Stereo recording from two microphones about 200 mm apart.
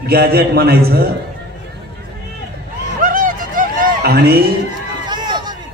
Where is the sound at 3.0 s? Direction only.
45° right (ahead or behind).